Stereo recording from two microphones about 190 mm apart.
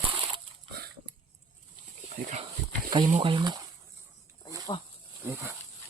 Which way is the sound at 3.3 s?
20° right (ahead or behind).